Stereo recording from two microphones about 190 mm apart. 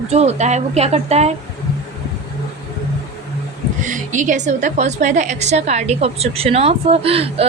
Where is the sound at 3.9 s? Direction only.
40° right (ahead or behind).